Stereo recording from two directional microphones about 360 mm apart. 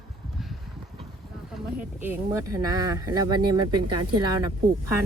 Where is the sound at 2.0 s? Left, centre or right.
Centre.